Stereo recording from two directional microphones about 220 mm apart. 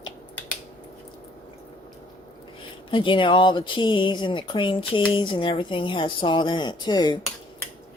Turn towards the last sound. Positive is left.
turn(degrees=20)  # may be behind; listen again after turning